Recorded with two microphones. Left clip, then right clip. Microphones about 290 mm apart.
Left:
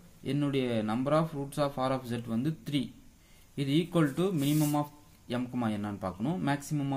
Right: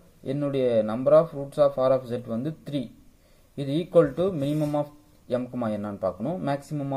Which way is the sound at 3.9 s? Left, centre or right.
Centre.